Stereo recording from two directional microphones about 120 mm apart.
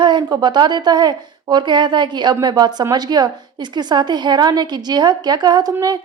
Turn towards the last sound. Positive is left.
turn(degrees=-30)  # may be behind; listen again after turning